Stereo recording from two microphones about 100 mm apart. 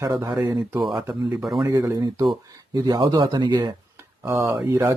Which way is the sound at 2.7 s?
45° right (ahead or behind).